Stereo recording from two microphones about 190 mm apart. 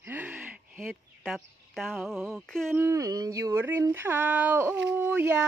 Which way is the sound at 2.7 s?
15° right (ahead or behind).